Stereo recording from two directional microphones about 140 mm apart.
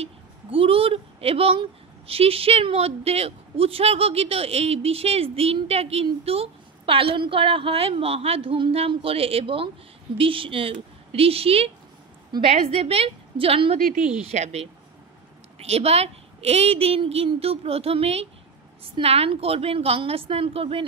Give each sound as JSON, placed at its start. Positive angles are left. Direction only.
{"t": 0.0, "sound": "speech", "side_deg": -40}
{"t": 13.7, "sound": "a woman's voice", "side_deg": -90}
{"t": 14.2, "sound": "speech", "side_deg": -50}